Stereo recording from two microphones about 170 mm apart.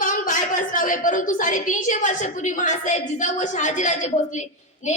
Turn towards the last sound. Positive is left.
turn(degrees=45)  # may be behind; listen again after turning